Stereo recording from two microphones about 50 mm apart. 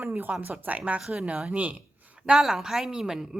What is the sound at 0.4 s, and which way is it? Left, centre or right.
Speech, right.